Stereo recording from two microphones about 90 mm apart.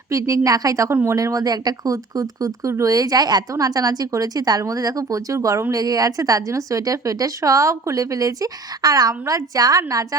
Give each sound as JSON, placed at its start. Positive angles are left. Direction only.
{"t": 0.1, "sound": "speech", "side_deg": -35}